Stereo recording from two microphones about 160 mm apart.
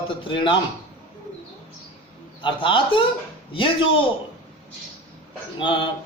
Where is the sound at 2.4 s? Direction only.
30° left (ahead or behind).